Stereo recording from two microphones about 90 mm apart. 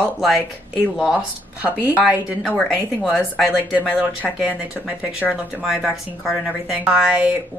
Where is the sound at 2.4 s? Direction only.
5° left (ahead or behind).